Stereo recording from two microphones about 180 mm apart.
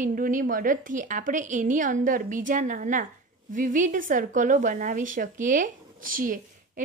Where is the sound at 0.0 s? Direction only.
50° right (ahead or behind).